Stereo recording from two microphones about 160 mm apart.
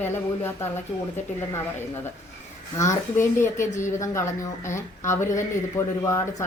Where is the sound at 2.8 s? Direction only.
15° left (ahead or behind).